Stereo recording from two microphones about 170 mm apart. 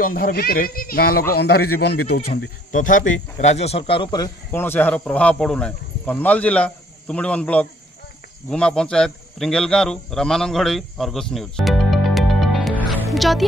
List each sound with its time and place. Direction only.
0.0 s speech: 55° left (ahead or behind)
2.7 s speech: 50° left (ahead or behind); by 4.3 s 25° left (ahead or behind)
4.5 s a man's voice: 10° left (ahead or behind)